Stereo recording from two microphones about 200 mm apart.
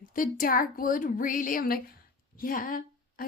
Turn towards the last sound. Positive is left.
turn(degrees=45)  # may be behind; listen again after turning